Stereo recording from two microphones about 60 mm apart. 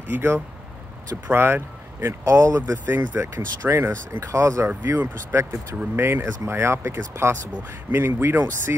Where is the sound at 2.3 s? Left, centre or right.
Right.